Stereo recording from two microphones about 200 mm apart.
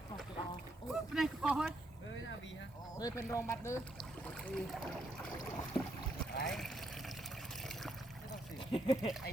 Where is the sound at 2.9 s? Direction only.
15° left (ahead or behind).